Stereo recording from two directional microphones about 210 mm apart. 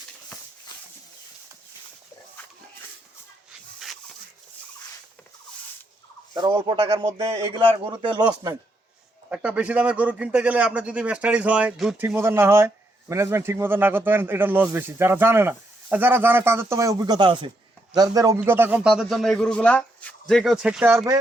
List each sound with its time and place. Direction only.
6.3 s speech: 20° right (ahead or behind)
9.3 s a man's voice: 5° right (ahead or behind)